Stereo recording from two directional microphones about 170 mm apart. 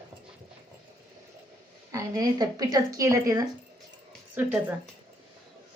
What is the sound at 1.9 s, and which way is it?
A woman's voice, 20° right (ahead or behind).